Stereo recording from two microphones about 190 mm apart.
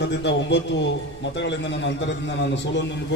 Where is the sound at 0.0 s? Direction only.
65° left (ahead or behind).